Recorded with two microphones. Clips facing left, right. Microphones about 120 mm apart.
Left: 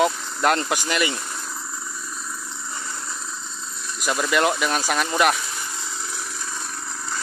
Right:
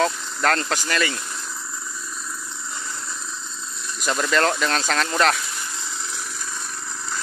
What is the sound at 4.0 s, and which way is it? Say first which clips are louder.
Speech: even; 10° left (ahead or behind).